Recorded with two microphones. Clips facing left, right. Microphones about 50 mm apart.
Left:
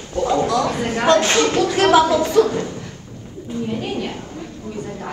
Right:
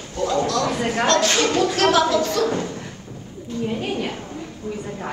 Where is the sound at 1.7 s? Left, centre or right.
Centre.